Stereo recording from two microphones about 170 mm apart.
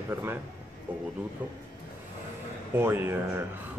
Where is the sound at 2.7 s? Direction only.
15° right (ahead or behind).